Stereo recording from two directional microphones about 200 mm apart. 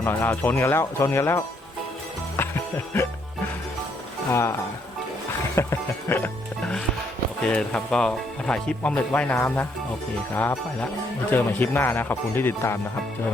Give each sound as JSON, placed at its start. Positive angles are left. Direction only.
{"t": 0.0, "sound": "speech", "side_deg": 10}
{"t": 2.3, "sound": "music", "side_deg": 10}
{"t": 4.3, "sound": "speech", "side_deg": 15}
{"t": 5.5, "sound": "speech", "side_deg": 10}